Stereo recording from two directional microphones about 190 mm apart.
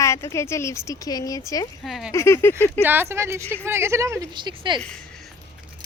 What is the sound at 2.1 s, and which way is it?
Speech, 15° left (ahead or behind).